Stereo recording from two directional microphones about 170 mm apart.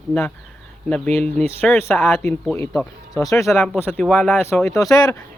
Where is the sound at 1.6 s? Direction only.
10° left (ahead or behind).